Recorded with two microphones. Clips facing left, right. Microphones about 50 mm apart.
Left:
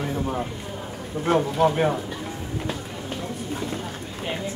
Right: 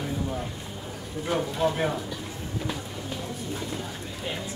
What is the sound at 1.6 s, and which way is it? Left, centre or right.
Speech, left.